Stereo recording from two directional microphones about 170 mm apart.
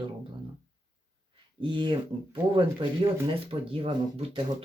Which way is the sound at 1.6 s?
30° right (ahead or behind).